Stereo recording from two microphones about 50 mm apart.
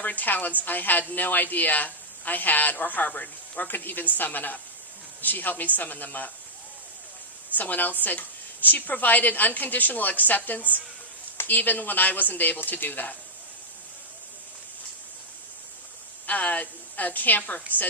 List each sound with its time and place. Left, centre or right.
0.0 s a woman's voice: left
7.5 s a woman's voice: left
16.2 s a woman's voice: left